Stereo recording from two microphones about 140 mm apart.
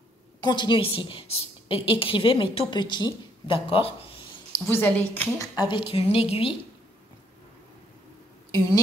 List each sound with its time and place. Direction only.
0.5 s a woman's voice: 35° left (ahead or behind)
4.6 s a woman's voice: 15° left (ahead or behind)
5.4 s a woman's voice: 30° left (ahead or behind)
8.5 s a woman's voice: 25° left (ahead or behind)